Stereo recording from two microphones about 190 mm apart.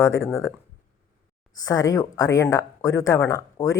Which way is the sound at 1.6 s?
20° left (ahead or behind).